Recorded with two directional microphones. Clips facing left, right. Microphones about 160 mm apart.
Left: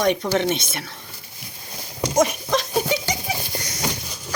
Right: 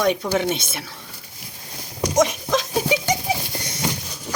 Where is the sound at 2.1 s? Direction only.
Centre (ahead or behind).